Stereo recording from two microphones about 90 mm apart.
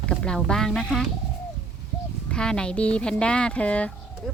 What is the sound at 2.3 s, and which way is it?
Speech, 10° left (ahead or behind).